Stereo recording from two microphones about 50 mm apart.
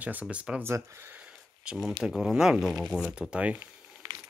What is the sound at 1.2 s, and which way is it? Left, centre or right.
Speech, centre.